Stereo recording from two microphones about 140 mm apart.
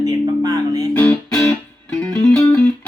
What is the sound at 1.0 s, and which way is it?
Music, 10° left (ahead or behind).